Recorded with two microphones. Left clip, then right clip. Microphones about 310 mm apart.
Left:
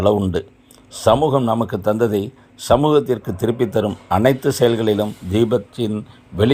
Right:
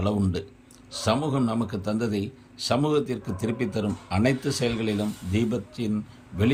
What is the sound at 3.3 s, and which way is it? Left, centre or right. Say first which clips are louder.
Speech: left 10 dB; centre.